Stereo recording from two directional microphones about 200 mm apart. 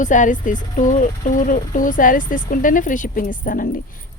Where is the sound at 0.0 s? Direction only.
40° left (ahead or behind).